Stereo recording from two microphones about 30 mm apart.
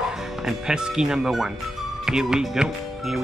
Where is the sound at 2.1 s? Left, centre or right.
Right.